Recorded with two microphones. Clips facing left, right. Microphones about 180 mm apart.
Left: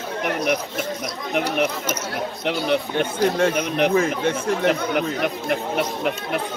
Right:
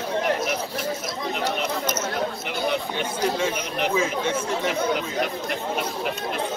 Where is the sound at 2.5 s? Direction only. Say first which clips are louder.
Left 4 dB; 60° left (ahead or behind).